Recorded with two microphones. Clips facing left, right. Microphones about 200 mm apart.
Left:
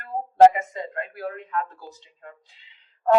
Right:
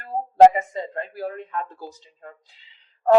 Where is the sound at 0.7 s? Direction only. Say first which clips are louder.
Right 2 dB; 30° right (ahead or behind).